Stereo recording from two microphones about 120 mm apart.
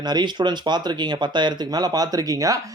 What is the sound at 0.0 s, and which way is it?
Speech, 35° right (ahead or behind).